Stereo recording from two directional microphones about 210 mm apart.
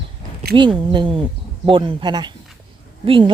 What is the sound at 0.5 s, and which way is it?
Speech, 20° right (ahead or behind).